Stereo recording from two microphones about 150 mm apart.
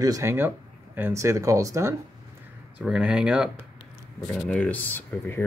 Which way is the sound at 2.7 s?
5° right (ahead or behind).